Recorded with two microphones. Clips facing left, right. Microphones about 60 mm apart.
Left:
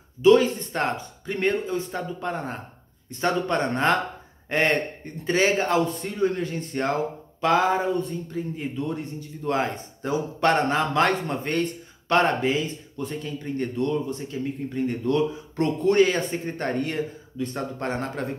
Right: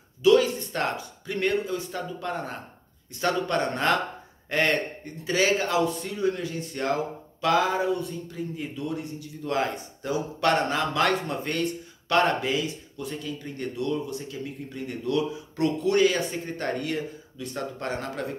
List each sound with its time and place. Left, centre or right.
0.2 s speech: left